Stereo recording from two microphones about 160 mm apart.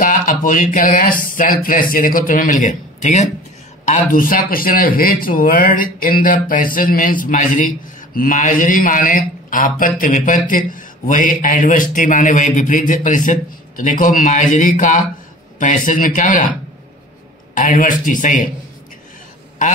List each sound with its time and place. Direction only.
0.0 s speech: 55° left (ahead or behind)
17.6 s speech: 55° left (ahead or behind)
19.6 s a sound: 55° left (ahead or behind)